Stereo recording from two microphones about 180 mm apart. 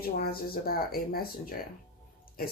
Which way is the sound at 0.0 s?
55° left (ahead or behind).